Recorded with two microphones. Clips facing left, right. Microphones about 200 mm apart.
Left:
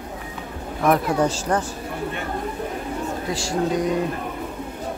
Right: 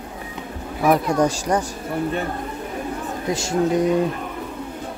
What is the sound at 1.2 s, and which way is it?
Speech, 15° right (ahead or behind).